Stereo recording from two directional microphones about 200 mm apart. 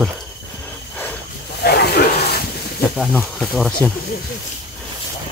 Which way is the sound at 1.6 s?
55° left (ahead or behind).